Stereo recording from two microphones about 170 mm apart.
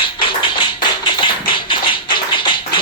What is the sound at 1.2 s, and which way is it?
Tap, 30° left (ahead or behind).